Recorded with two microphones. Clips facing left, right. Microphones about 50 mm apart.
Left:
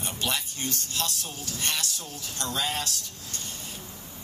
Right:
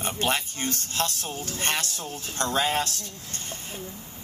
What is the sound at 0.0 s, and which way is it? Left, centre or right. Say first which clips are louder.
A man's voice: right 4 dB; right.